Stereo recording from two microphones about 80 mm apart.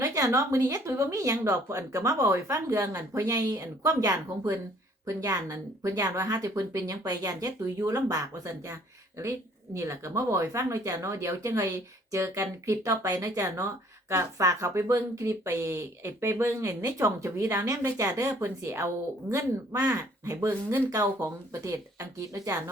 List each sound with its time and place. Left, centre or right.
0.0 s speech: right